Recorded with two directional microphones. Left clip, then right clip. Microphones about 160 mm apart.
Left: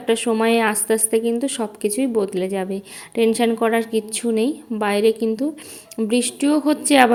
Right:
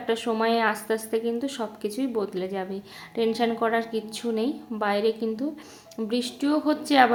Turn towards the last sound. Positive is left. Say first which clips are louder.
# left 5 dB
turn(degrees=35)  # may be behind; listen again after turning